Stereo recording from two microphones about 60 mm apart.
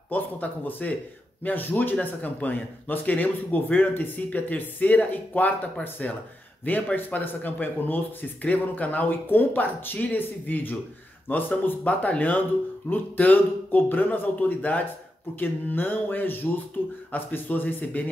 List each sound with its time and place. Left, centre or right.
0.1 s speech: left